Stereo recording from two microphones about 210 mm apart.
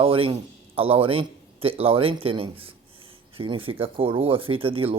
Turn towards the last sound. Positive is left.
turn(degrees=-25)  # may be behind; listen again after turning